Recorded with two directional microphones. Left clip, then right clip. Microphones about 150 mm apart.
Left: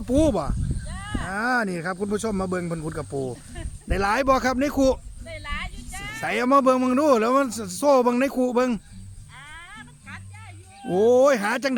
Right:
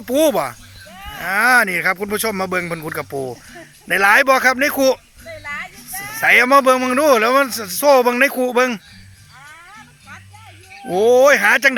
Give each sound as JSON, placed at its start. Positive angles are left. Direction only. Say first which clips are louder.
{"t": 0.0, "sound": "speech", "louder": "right 6 dB", "side_deg": 0}
{"t": 3.1, "sound": "speech", "louder": "right 5 dB", "side_deg": -15}
{"t": 3.8, "sound": "speech", "louder": "right 9 dB", "side_deg": 5}
{"t": 5.4, "sound": "a sound", "louder": "right 5 dB", "side_deg": 30}
{"t": 6.1, "sound": "speech", "louder": "right 9 dB", "side_deg": 0}
{"t": 10.9, "sound": "speech", "louder": "right 6 dB", "side_deg": 5}